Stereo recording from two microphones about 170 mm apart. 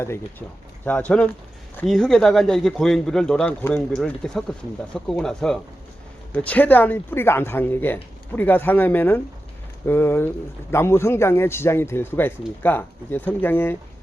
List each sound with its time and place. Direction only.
0.0 s a man's voice: 15° left (ahead or behind)